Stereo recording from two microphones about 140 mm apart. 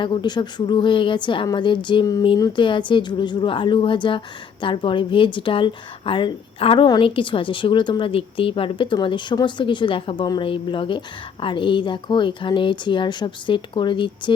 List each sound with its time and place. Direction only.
0.0 s a woman's voice: 35° left (ahead or behind)